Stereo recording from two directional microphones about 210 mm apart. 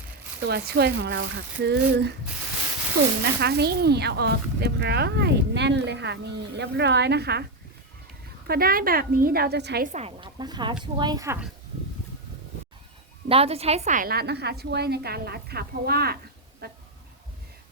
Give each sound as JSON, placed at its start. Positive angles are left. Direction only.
{"t": 0.3, "sound": "speech", "side_deg": -50}
{"t": 3.4, "sound": "speech", "side_deg": -50}
{"t": 8.4, "sound": "speech", "side_deg": -45}
{"t": 9.8, "sound": "a woman's voice", "side_deg": -30}
{"t": 13.2, "sound": "speech", "side_deg": -30}